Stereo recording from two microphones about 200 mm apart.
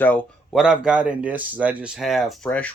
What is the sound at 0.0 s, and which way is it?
Speech, 5° left (ahead or behind).